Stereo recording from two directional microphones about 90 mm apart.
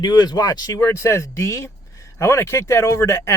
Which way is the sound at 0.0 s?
55° left (ahead or behind).